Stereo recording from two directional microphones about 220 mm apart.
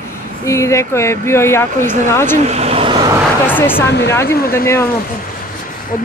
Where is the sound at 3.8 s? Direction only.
50° left (ahead or behind).